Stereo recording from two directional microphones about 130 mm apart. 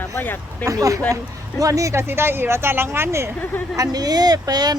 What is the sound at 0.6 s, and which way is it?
Speech, 25° right (ahead or behind).